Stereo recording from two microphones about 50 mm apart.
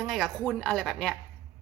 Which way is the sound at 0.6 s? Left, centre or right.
Centre.